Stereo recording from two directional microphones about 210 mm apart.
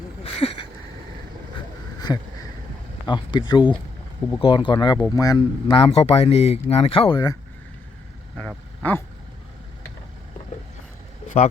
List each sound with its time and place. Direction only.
0.2 s a sound: 25° left (ahead or behind)
3.5 s speech: 20° left (ahead or behind)
8.4 s vehicle: 5° left (ahead or behind)